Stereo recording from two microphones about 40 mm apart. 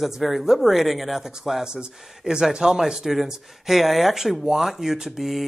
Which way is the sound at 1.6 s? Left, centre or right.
Centre.